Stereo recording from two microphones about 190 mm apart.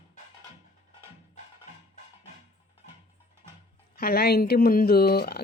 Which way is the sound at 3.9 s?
55° left (ahead or behind).